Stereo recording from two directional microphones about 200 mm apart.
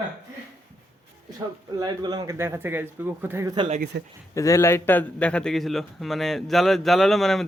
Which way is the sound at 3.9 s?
60° right (ahead or behind).